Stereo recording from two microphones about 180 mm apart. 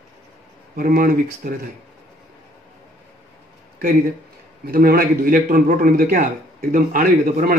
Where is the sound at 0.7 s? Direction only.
50° right (ahead or behind).